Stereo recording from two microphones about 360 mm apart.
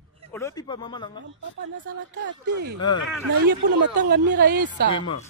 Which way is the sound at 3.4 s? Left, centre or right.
Right.